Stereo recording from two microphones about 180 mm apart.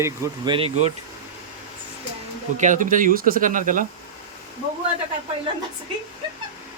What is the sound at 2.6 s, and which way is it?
Speech, 45° right (ahead or behind).